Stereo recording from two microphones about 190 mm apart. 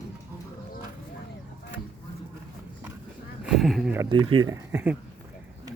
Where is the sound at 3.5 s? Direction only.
Centre (ahead or behind).